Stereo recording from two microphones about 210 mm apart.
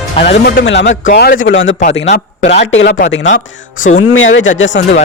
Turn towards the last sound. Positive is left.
turn(degrees=60)  # may be behind; listen again after turning